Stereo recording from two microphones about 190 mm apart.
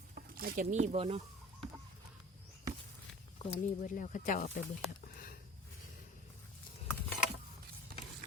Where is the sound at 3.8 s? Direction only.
45° left (ahead or behind).